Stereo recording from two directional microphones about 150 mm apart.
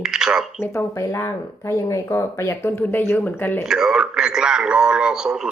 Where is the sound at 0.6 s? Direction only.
20° left (ahead or behind).